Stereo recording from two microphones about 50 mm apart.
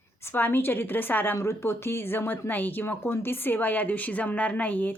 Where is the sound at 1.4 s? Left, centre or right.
Left.